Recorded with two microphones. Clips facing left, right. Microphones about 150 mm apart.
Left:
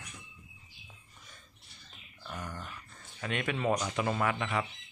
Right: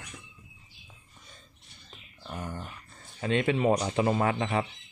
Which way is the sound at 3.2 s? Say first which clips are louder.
Right 7 dB; 30° right (ahead or behind).